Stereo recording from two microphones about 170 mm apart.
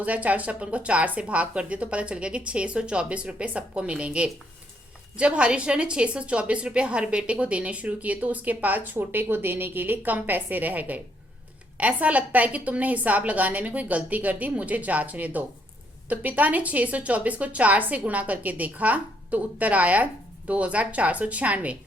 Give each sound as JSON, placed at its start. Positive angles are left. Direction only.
{"t": 0.0, "sound": "a woman's voice", "side_deg": -10}